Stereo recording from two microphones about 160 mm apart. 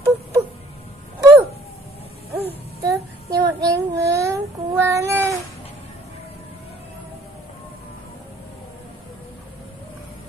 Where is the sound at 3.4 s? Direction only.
20° right (ahead or behind).